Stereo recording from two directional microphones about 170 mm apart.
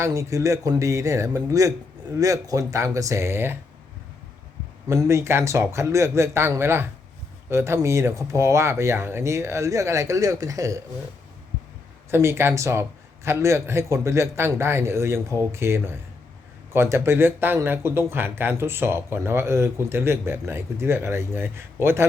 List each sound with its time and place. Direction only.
0.0 s speech: 20° right (ahead or behind)
4.9 s speech: 15° right (ahead or behind)
12.1 s speech: 15° right (ahead or behind)